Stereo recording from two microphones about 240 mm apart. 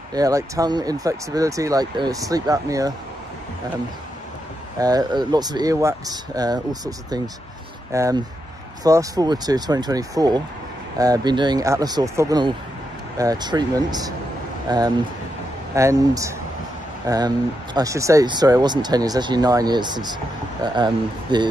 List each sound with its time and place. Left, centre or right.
0.1 s speech: centre
4.7 s speech: centre